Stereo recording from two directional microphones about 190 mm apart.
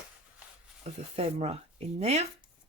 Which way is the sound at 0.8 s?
35° right (ahead or behind).